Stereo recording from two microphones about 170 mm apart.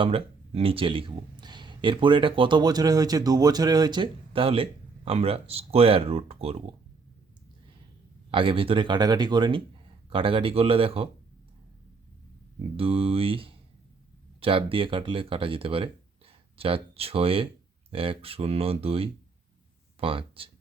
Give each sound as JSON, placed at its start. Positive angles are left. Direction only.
{"t": 0.0, "sound": "speech", "side_deg": -35}
{"t": 8.3, "sound": "speech", "side_deg": -30}
{"t": 12.7, "sound": "speech", "side_deg": -35}